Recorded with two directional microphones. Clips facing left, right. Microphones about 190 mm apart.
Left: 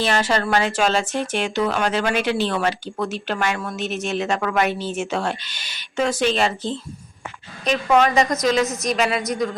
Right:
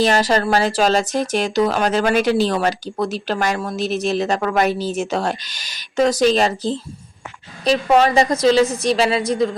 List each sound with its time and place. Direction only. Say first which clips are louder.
0.0 s speech: right 4 dB; 40° right (ahead or behind)